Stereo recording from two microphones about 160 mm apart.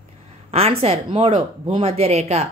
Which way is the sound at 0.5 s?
40° right (ahead or behind).